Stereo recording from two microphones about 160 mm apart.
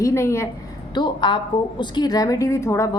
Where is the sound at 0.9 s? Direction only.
30° left (ahead or behind).